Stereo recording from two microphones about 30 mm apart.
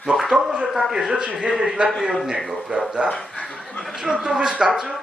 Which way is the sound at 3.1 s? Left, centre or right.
Left.